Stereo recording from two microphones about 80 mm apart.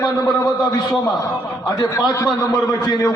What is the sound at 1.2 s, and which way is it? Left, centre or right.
A man's voice, left.